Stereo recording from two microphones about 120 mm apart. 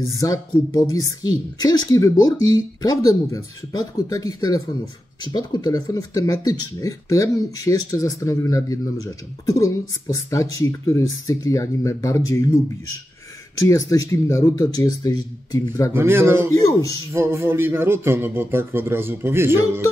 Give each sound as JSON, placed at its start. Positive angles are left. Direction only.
{"t": 0.7, "sound": "speech", "side_deg": 30}
{"t": 13.6, "sound": "speech", "side_deg": 25}
{"t": 15.9, "sound": "a man's voice", "side_deg": -20}
{"t": 16.5, "sound": "speech", "side_deg": 25}
{"t": 17.1, "sound": "a man's voice", "side_deg": -20}